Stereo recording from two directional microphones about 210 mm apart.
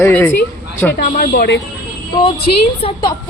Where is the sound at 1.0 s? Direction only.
40° left (ahead or behind).